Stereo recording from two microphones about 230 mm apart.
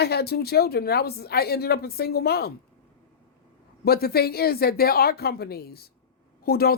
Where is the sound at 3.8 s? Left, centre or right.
Left.